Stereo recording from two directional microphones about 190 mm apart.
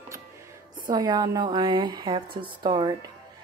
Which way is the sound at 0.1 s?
15° right (ahead or behind).